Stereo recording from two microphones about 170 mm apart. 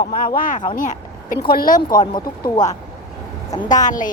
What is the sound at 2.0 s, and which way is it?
Speech, 25° left (ahead or behind).